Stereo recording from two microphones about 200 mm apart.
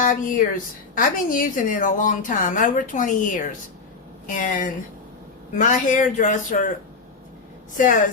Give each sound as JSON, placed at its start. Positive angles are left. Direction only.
{"t": 0.0, "sound": "a woman's voice", "side_deg": 40}